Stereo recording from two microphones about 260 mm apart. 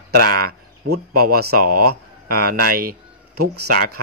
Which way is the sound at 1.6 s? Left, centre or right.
Right.